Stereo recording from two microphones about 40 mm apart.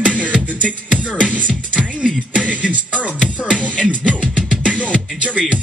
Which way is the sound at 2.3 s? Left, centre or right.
Right.